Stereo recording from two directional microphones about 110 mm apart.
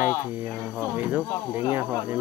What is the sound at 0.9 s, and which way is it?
Speech, 15° right (ahead or behind).